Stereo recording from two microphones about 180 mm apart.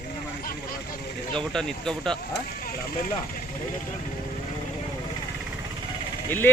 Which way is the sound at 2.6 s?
55° left (ahead or behind).